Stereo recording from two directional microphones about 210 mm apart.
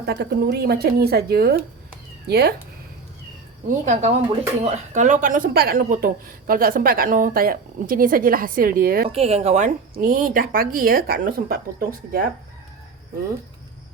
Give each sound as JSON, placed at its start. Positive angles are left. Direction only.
{"t": 0.0, "sound": "a woman's voice", "side_deg": -50}
{"t": 3.7, "sound": "a woman's voice", "side_deg": -35}
{"t": 9.0, "sound": "a woman's voice", "side_deg": -30}